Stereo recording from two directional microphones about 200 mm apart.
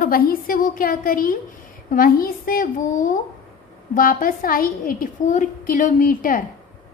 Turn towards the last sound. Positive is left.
turn(degrees=45)  # may be behind; listen again after turning